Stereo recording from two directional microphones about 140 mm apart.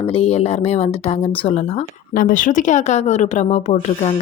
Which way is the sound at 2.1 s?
70° left (ahead or behind).